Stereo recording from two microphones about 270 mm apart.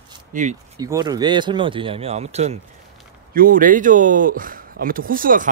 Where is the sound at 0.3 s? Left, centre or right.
Right.